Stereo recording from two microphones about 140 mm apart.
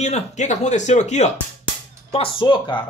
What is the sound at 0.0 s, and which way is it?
Speech, 55° left (ahead or behind).